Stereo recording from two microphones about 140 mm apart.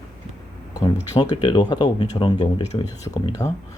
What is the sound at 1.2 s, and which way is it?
Speech, 30° left (ahead or behind).